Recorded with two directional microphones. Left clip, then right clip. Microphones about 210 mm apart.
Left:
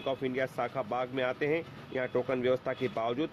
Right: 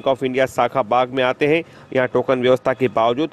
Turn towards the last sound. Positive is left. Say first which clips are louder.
# right 15 dB
turn(degrees=-45)  # may be behind; listen again after turning